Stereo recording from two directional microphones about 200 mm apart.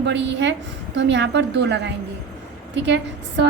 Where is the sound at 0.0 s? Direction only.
60° right (ahead or behind).